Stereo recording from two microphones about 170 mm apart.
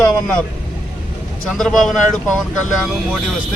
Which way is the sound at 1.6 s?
Centre (ahead or behind).